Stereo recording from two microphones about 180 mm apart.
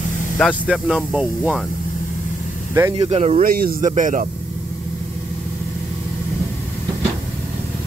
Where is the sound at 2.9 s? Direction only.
35° right (ahead or behind).